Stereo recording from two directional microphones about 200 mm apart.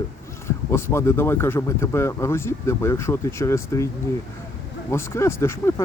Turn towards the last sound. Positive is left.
turn(degrees=15)  # may be behind; listen again after turning